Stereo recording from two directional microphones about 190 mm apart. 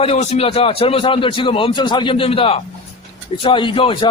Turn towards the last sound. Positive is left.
turn(degrees=25)  # may be behind; listen again after turning